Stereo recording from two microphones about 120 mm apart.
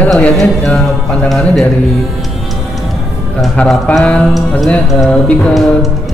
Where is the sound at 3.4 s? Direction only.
5° left (ahead or behind).